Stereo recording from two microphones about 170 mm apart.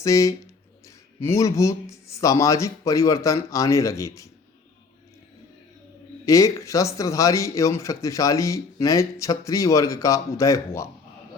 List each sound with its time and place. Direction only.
0.0 s a man's voice: 20° left (ahead or behind)
6.2 s a man's voice: 20° left (ahead or behind)